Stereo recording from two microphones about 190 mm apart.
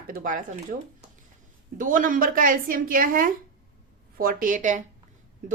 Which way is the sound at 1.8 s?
45° right (ahead or behind).